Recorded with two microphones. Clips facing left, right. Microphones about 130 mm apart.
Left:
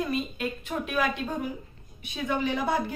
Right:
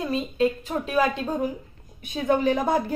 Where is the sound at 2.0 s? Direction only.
45° right (ahead or behind).